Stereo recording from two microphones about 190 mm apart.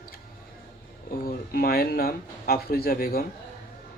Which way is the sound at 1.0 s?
50° left (ahead or behind).